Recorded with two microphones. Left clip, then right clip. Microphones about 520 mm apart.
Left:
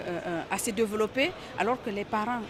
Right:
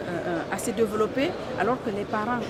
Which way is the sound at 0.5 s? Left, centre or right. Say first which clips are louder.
Right 2 dB; left.